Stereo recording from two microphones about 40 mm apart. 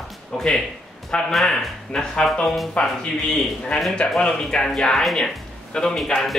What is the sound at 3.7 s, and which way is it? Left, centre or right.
Speech, centre.